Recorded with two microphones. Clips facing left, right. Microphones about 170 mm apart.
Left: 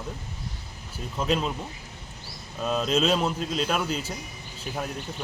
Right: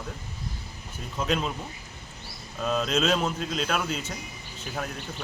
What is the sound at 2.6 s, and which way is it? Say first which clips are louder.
Speech: left 1 dB; centre (ahead or behind).